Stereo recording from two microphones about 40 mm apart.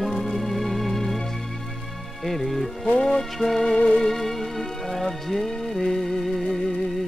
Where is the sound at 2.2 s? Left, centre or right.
Centre.